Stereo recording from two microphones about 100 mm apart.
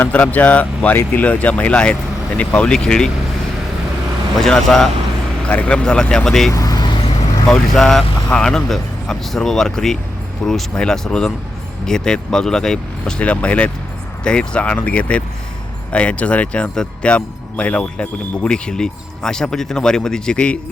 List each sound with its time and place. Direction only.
0.0 s speech: 15° left (ahead or behind)
4.4 s speech: 5° left (ahead or behind)
6.5 s vehicle: 40° left (ahead or behind)
7.0 s vehicle: 90° left
7.4 s speech: 5° left (ahead or behind)